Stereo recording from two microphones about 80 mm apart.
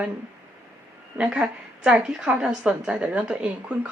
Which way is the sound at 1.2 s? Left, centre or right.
Centre.